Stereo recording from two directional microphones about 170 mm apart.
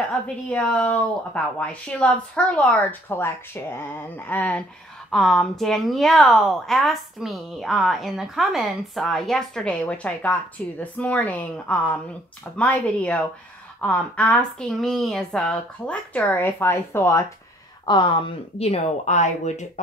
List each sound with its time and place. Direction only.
0.5 s a woman's voice: 10° left (ahead or behind); by 18.1 s 25° left (ahead or behind)
18.6 s speech: 35° left (ahead or behind)